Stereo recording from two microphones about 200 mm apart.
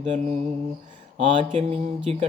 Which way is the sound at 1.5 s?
30° right (ahead or behind).